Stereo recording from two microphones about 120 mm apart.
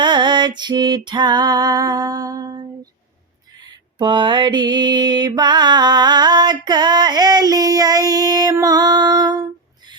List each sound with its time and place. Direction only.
0.0 s music: 40° right (ahead or behind)
3.6 s mantra: 35° right (ahead or behind)